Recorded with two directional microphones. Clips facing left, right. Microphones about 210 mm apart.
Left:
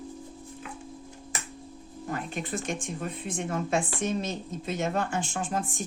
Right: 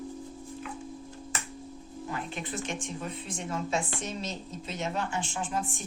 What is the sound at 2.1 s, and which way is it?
Music, 45° left (ahead or behind).